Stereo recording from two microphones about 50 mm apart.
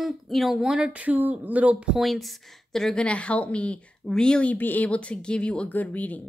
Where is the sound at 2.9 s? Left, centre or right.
Left.